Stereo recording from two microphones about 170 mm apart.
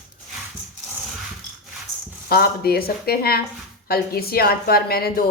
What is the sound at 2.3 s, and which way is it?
A woman's voice, 65° left (ahead or behind).